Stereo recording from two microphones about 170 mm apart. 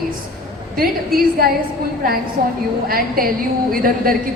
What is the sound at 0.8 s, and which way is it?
A woman's voice, 60° right (ahead or behind).